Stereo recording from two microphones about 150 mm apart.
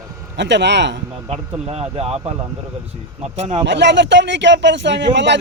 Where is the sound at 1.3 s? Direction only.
45° right (ahead or behind).